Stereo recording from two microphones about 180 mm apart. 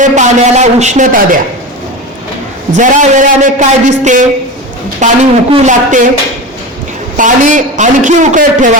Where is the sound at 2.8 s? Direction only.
45° right (ahead or behind).